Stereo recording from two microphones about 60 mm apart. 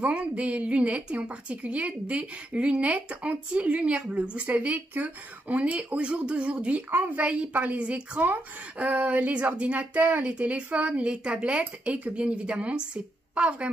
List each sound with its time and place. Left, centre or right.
0.0 s a woman's voice: right